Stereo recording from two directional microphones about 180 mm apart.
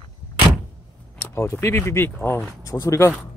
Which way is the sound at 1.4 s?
15° left (ahead or behind).